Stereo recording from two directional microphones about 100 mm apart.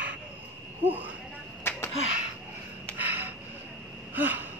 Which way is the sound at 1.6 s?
25° left (ahead or behind).